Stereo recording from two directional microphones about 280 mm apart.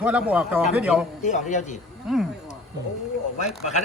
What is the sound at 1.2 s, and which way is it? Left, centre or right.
Speech, left.